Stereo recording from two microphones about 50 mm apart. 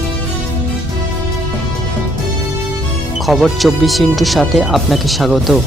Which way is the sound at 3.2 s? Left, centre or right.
Centre.